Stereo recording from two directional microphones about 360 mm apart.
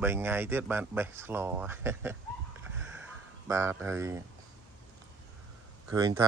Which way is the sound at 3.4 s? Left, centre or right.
Centre.